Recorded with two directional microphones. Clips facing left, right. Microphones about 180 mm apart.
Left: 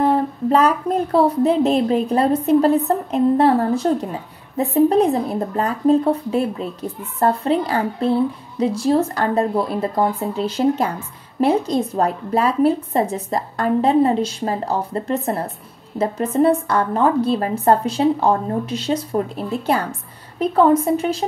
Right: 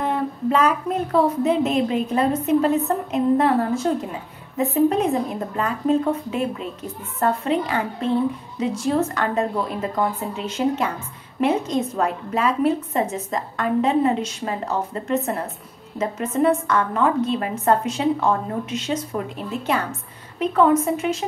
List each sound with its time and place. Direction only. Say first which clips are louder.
0.0 s speech: left 5 dB; 35° left (ahead or behind)